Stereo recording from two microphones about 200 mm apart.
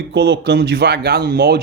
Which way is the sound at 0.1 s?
55° right (ahead or behind).